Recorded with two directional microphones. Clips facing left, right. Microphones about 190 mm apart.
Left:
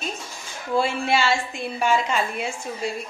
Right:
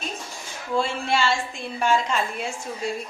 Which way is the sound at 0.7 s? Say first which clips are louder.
Left 2 dB; 5° left (ahead or behind).